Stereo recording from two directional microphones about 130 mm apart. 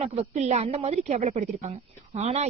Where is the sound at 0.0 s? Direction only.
55° right (ahead or behind).